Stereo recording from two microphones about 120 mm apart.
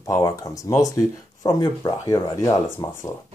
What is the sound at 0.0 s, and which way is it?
Speech, 30° left (ahead or behind).